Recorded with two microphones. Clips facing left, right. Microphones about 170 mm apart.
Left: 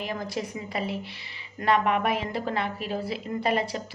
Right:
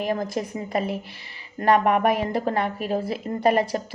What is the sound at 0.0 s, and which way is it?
Speech, 45° right (ahead or behind).